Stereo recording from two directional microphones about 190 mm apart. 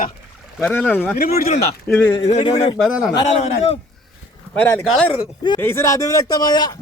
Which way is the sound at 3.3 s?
35° left (ahead or behind).